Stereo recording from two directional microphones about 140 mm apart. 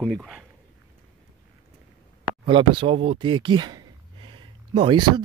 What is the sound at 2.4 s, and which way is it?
Speech, 40° right (ahead or behind).